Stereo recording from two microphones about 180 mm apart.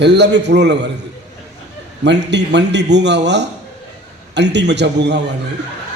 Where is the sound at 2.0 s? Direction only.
75° right (ahead or behind).